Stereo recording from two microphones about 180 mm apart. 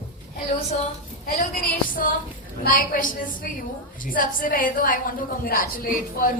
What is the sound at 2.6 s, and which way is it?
A woman's voice, 50° left (ahead or behind).